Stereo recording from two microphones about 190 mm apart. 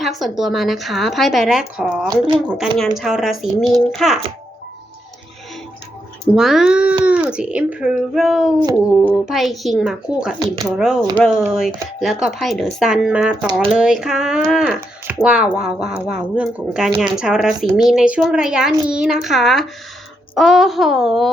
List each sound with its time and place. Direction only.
0.0 s speech: centre (ahead or behind)
2.0 s speech: 20° right (ahead or behind)
2.5 s speech: centre (ahead or behind)
6.3 s speech: 5° right (ahead or behind)